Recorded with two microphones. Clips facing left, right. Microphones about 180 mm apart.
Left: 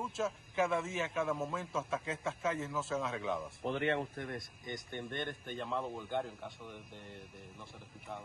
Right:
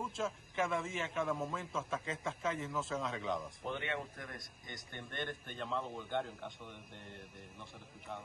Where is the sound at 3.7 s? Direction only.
35° left (ahead or behind).